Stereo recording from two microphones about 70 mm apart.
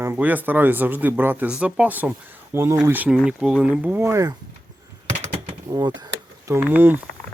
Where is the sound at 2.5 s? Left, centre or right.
Right.